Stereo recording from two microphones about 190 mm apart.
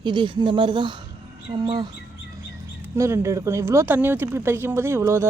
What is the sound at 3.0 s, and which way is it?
Speech, 15° right (ahead or behind).